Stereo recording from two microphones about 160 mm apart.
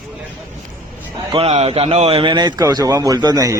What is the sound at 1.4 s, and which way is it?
A man's voice, 40° right (ahead or behind).